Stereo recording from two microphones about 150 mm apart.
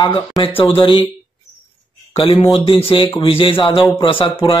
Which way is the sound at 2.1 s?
35° left (ahead or behind).